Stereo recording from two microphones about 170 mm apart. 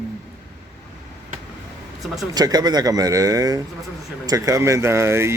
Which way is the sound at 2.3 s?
25° right (ahead or behind).